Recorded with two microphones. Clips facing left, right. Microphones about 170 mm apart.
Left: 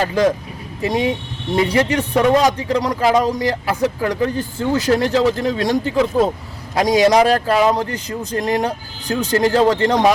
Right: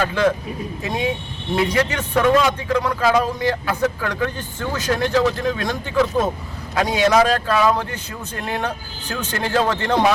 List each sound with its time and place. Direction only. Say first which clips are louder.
0.0 s speech: left 2 dB; 35° left (ahead or behind)